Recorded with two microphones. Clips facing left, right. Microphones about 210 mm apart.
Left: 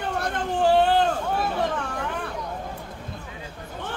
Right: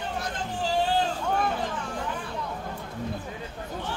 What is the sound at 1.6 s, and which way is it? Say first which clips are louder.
Vehicle: left 5 dB; 60° left (ahead or behind).